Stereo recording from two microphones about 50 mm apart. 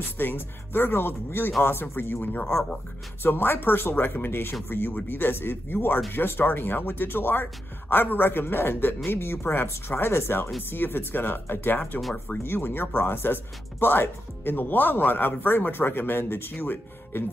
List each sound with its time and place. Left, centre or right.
0.2 s speech: left
3.2 s speech: left